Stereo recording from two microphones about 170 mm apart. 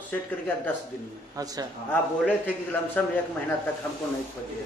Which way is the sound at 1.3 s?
20° right (ahead or behind).